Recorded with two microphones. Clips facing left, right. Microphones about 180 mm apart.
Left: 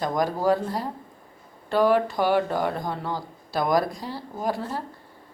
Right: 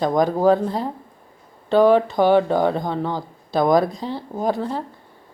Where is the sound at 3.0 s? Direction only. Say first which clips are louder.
Right 5 dB; 20° right (ahead or behind).